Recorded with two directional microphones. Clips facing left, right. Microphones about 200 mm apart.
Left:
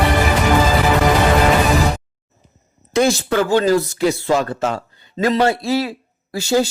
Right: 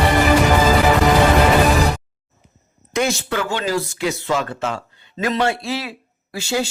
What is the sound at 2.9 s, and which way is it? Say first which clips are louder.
Speech: left 5 dB; 40° left (ahead or behind).